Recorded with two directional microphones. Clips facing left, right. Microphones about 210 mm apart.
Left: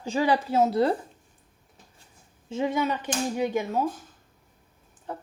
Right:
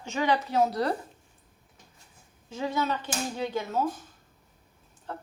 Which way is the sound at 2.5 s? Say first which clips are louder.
Left 3 dB; 25° left (ahead or behind).